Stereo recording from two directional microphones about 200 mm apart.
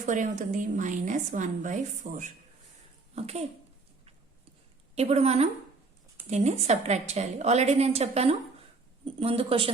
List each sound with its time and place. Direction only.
0.0 s a woman's voice: 40° right (ahead or behind)
4.9 s a woman's voice: 30° right (ahead or behind)